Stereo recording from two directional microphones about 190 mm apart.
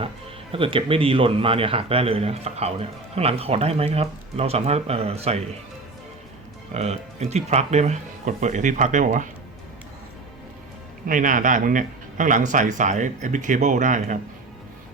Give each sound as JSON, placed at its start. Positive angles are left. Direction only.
{"t": 0.5, "sound": "a man's voice", "side_deg": -30}
{"t": 6.7, "sound": "a man's voice", "side_deg": -35}
{"t": 11.0, "sound": "a man's voice", "side_deg": -45}